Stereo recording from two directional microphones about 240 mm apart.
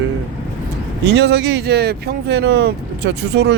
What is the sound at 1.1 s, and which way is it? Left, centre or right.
Speech, right.